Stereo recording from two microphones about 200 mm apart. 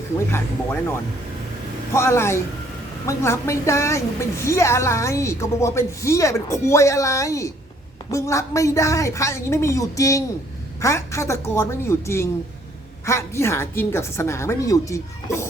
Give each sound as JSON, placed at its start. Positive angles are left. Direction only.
{"t": 0.2, "sound": "a woman's voice", "side_deg": 10}